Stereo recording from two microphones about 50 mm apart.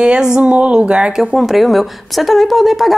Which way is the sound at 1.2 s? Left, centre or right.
Centre.